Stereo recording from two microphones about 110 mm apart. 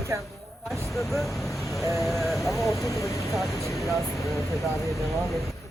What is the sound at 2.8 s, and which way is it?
Vehicle, 30° left (ahead or behind).